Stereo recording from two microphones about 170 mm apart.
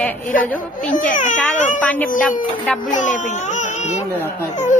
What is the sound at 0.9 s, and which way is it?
Speech, 50° left (ahead or behind).